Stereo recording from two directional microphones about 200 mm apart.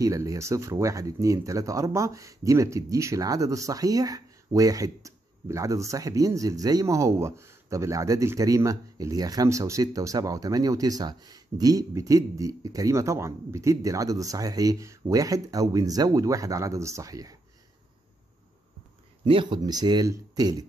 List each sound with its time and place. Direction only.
0.0 s speech: 15° right (ahead or behind)
19.2 s speech: 25° right (ahead or behind)